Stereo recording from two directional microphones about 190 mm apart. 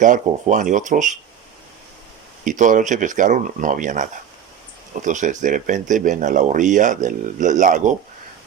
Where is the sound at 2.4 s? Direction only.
40° right (ahead or behind).